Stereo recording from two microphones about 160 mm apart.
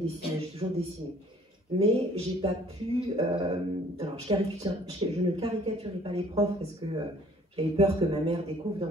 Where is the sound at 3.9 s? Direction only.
35° right (ahead or behind).